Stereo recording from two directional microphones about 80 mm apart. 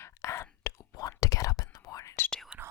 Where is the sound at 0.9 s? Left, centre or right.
Left.